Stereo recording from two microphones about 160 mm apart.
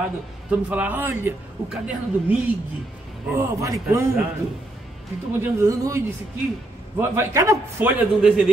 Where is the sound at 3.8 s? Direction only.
10° right (ahead or behind).